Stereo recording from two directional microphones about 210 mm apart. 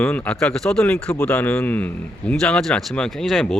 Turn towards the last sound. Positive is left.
turn(degrees=0)  # may be behind; listen again after turning